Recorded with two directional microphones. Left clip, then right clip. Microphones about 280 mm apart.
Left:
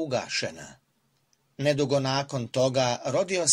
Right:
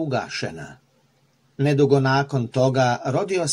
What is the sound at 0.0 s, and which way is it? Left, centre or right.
Speech, left.